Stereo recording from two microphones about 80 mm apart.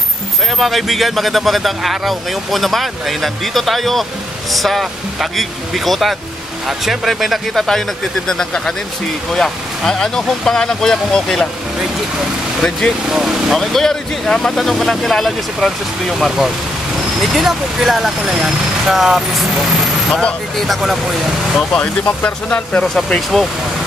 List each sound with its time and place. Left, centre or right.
0.6 s speech: centre
13.1 s speech: centre
20.1 s speech: centre
21.7 s speech: centre